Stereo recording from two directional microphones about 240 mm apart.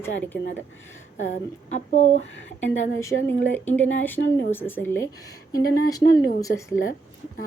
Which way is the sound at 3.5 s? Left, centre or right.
Centre.